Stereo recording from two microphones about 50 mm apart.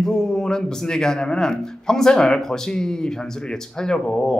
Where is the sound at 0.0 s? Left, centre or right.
Centre.